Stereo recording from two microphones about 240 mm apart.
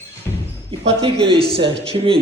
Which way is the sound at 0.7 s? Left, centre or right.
Right.